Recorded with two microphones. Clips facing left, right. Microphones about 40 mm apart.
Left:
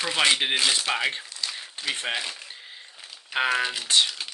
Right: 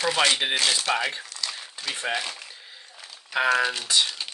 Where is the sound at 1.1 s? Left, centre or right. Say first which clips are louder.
Even; left.